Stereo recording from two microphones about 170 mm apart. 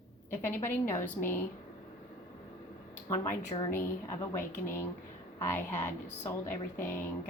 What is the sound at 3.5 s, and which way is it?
Speech, 30° left (ahead or behind).